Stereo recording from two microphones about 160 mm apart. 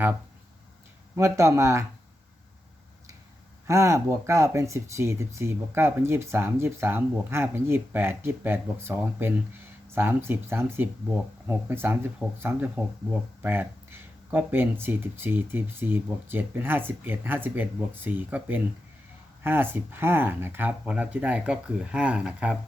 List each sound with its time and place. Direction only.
1.1 s speech: 20° right (ahead or behind)
3.7 s speech: 20° right (ahead or behind)